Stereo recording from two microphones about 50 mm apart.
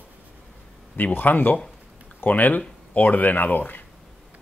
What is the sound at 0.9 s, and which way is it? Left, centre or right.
Speech, left.